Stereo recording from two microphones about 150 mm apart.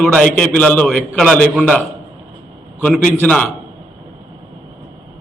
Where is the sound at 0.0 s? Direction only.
10° left (ahead or behind).